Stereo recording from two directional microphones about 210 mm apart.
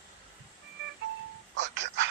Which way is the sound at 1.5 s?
60° right (ahead or behind).